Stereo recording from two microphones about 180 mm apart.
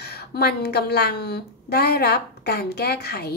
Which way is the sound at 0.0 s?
60° left (ahead or behind).